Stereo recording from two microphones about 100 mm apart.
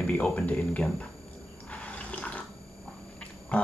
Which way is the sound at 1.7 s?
15° left (ahead or behind).